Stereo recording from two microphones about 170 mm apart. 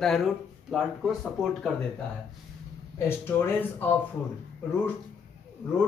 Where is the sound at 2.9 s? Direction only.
15° left (ahead or behind).